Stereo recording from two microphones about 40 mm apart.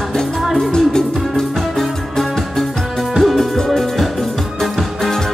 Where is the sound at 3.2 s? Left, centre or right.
Centre.